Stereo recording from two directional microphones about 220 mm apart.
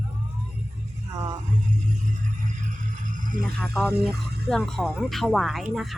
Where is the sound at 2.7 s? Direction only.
35° right (ahead or behind).